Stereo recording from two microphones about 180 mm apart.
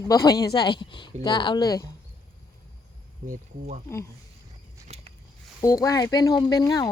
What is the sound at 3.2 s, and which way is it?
Speech, 45° right (ahead or behind).